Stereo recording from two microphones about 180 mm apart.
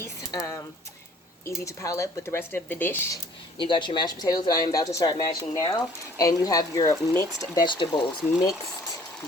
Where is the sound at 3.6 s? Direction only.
25° left (ahead or behind).